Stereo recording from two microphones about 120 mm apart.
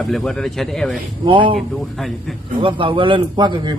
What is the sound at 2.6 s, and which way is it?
A man's voice, 45° right (ahead or behind).